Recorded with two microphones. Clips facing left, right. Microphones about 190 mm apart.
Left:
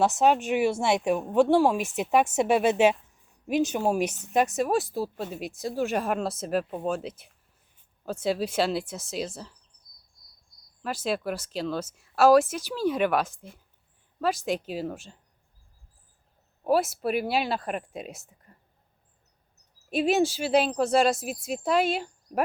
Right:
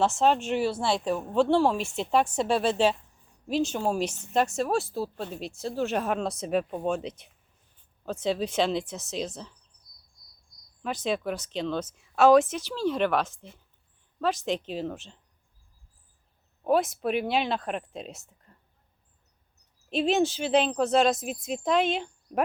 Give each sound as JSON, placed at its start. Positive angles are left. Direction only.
{"t": 0.0, "sound": "speech", "side_deg": 15}
{"t": 10.8, "sound": "speech", "side_deg": 5}
{"t": 16.6, "sound": "speech", "side_deg": 5}
{"t": 19.9, "sound": "speech", "side_deg": 10}